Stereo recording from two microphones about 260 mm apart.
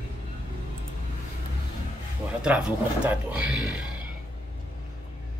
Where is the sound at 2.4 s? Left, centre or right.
Centre.